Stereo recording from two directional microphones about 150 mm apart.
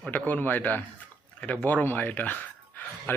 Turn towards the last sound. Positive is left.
turn(degrees=10)  # may be behind; listen again after turning